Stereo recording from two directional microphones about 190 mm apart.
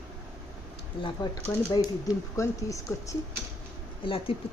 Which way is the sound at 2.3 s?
15° left (ahead or behind).